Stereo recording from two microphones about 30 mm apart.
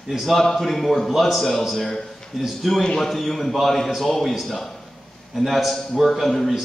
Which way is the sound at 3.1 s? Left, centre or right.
Centre.